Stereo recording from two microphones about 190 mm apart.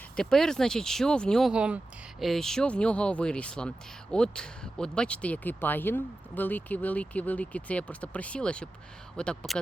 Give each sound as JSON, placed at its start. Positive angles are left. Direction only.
{"t": 0.2, "sound": "speech", "side_deg": 5}